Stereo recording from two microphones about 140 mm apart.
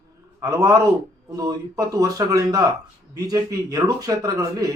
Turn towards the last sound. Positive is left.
turn(degrees=-25)  # may be behind; listen again after turning